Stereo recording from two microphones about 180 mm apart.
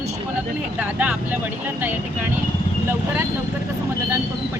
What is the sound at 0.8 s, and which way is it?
Speech, 10° right (ahead or behind).